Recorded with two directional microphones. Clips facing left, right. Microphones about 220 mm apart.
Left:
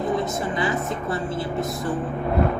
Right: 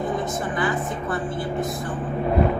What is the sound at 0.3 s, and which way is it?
A woman's voice, 25° left (ahead or behind).